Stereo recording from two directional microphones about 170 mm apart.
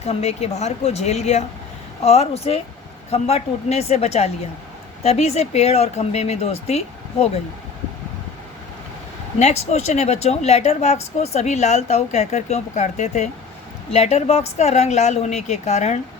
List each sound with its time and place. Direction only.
0.0 s speech: 40° left (ahead or behind)
9.4 s speech: 40° left (ahead or behind)